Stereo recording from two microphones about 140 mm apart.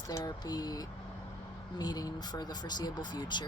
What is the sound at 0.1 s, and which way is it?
Speech, 25° left (ahead or behind).